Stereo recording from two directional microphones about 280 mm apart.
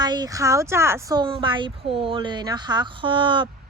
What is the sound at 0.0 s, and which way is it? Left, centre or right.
A woman's voice, centre.